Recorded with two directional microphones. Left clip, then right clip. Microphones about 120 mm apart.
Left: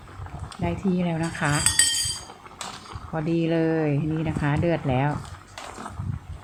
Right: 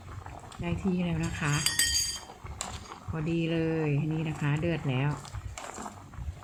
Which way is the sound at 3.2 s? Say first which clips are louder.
Left 7 dB; 20° left (ahead or behind).